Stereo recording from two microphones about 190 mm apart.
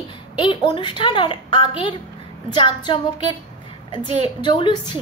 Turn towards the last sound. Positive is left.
turn(degrees=25)  # may be behind; listen again after turning